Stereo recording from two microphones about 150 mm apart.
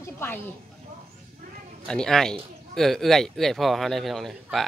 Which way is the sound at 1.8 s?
5° left (ahead or behind).